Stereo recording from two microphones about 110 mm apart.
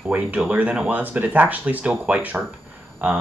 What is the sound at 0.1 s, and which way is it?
Speech, 10° right (ahead or behind).